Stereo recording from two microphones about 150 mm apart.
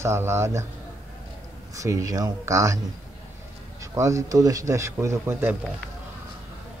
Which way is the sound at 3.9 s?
20° right (ahead or behind).